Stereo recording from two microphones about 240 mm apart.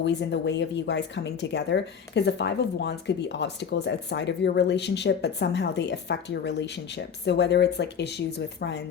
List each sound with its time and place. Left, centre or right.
0.0 s speech: left